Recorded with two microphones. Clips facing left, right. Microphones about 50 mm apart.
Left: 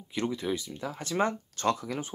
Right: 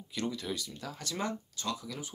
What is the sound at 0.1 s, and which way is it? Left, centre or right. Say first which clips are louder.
Speech: left 5 dB; left.